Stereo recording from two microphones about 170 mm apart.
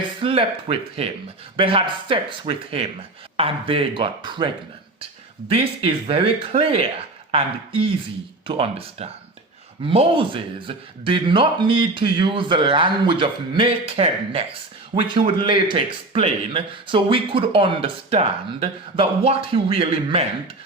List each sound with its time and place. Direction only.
0.2 s a man's voice: 35° right (ahead or behind)
5.5 s a man's voice: 35° right (ahead or behind)